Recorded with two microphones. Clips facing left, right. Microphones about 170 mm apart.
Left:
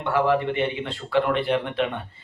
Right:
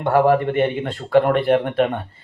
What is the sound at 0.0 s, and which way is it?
A man's voice, 45° right (ahead or behind).